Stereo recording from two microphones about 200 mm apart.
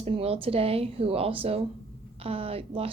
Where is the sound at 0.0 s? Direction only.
30° right (ahead or behind).